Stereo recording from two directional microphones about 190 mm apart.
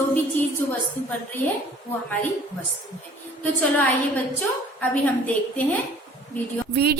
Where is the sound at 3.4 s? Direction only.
10° left (ahead or behind).